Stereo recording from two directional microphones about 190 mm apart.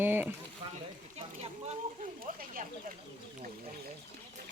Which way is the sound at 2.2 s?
50° right (ahead or behind).